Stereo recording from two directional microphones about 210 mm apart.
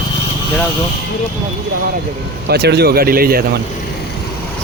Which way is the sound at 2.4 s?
50° right (ahead or behind).